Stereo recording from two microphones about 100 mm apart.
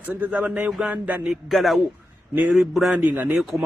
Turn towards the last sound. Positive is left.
turn(degrees=0)  # may be behind; listen again after turning